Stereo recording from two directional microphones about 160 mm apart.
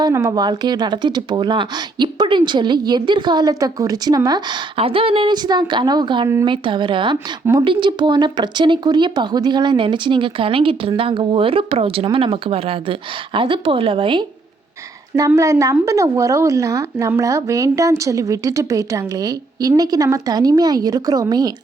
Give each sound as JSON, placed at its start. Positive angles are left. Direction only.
{"t": 0.0, "sound": "speech", "side_deg": -20}
{"t": 15.3, "sound": "speech", "side_deg": -20}